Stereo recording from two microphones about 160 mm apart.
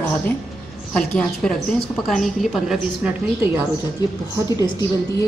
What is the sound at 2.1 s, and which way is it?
A woman's voice, centre (ahead or behind).